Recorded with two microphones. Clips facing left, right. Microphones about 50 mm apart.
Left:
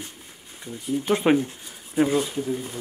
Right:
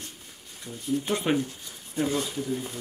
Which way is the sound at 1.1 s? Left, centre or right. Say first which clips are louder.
Left 9 dB; left.